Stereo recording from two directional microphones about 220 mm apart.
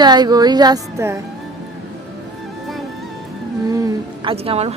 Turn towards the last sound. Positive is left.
turn(degrees=-25)  # may be behind; listen again after turning